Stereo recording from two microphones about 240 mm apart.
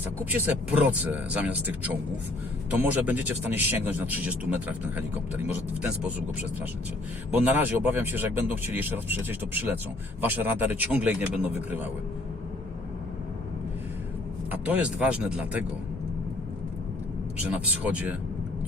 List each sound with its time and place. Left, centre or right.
0.3 s speech: centre
7.3 s speech: centre
14.5 s speech: centre
17.8 s speech: centre